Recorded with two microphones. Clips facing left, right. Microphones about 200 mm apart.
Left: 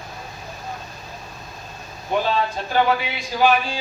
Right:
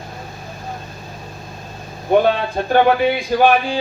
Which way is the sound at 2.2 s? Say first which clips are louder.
Right 5 dB; 55° right (ahead or behind).